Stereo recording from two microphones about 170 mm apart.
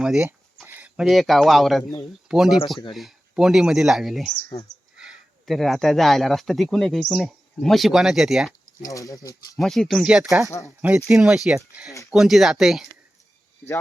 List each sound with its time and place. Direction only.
0.7 s speech: 5° right (ahead or behind)
8.8 s speech: 20° left (ahead or behind)
9.6 s speech: centre (ahead or behind)